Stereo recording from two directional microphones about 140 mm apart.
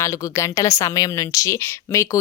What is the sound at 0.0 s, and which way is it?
Speech, 20° left (ahead or behind).